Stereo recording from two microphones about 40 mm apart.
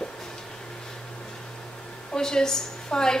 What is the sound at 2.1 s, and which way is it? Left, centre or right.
A woman's voice, centre.